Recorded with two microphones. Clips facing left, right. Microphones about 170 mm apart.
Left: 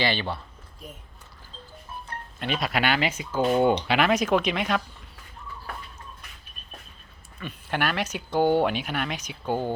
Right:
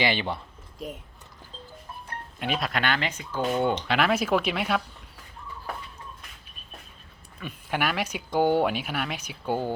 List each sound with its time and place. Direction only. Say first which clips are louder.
0.0 s speech: even; 15° right (ahead or behind)
2.4 s speech: left 2 dB; centre (ahead or behind)
7.3 s speech: even; 10° right (ahead or behind)